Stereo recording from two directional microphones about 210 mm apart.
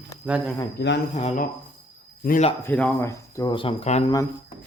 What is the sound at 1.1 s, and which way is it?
Speech, 30° left (ahead or behind).